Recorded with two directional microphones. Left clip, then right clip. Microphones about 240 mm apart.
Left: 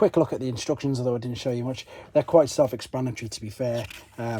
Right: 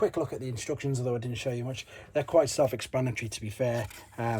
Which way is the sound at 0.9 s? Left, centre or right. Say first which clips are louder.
Left 5 dB; left.